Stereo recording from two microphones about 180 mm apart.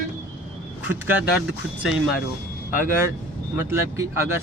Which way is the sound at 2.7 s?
15° right (ahead or behind).